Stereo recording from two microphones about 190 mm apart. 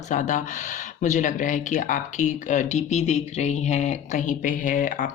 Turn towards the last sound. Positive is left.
turn(degrees=40)  # may be behind; listen again after turning